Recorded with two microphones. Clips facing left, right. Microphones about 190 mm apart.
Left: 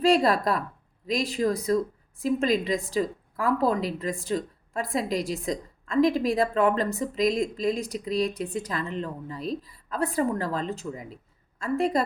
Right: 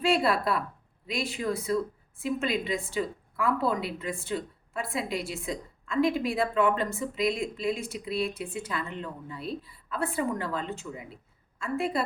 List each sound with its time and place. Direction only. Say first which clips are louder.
0.0 s a woman's voice: left 4 dB; 40° left (ahead or behind)